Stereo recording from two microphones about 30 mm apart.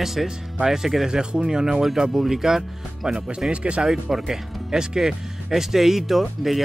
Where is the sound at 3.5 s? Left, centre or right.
Right.